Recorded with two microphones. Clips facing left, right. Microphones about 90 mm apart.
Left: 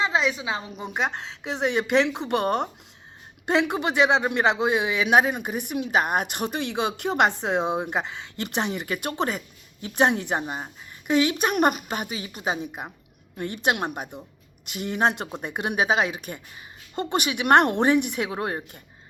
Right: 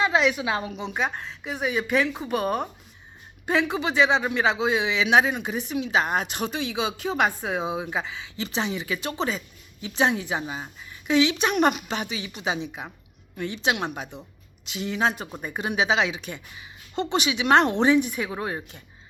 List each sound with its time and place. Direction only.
0.0 s a woman's voice: 30° left (ahead or behind)
1.9 s a woman's voice: 70° left (ahead or behind)
18.3 s a woman's voice: 50° left (ahead or behind)